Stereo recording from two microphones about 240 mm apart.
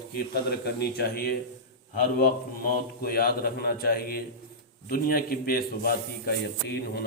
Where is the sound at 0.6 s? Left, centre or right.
Left.